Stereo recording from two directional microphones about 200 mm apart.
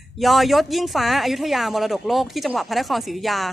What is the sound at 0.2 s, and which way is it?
Speech, centre (ahead or behind).